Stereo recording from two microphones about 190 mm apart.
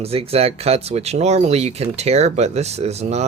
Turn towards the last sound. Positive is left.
turn(degrees=-35)  # may be behind; listen again after turning